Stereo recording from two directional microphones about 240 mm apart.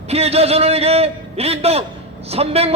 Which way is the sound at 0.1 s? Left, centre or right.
Right.